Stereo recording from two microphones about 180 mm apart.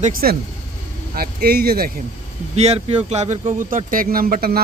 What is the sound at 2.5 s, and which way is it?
Speech, 35° right (ahead or behind).